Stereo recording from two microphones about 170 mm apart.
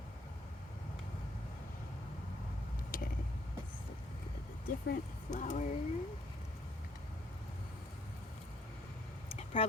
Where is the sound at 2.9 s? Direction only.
55° left (ahead or behind).